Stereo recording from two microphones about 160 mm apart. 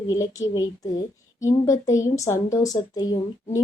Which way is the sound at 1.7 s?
20° left (ahead or behind).